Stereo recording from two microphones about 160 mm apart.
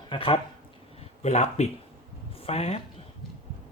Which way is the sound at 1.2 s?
45° left (ahead or behind).